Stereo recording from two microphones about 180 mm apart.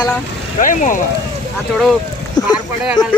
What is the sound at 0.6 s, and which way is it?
Speech, 45° left (ahead or behind).